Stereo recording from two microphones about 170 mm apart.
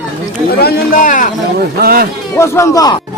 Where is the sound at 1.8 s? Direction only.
65° right (ahead or behind).